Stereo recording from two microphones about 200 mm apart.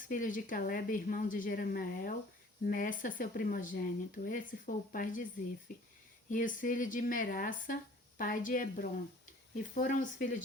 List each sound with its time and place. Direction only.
0.0 s speech: 40° left (ahead or behind)
6.3 s speech: 40° left (ahead or behind)